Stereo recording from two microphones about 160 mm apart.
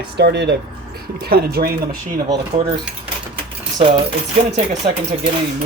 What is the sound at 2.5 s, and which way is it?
Cutlery, 30° right (ahead or behind).